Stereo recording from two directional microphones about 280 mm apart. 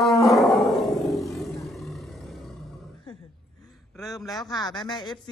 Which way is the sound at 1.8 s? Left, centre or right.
Centre.